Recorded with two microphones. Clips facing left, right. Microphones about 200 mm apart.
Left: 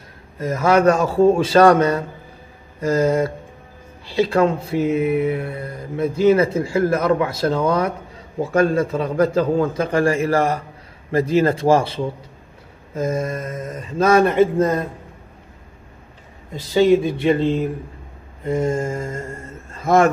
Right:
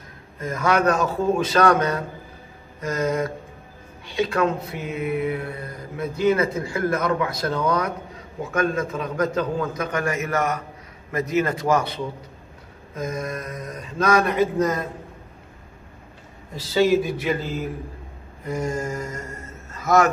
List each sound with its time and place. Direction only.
0.4 s a man's voice: 30° left (ahead or behind)
16.7 s speech: 25° left (ahead or behind)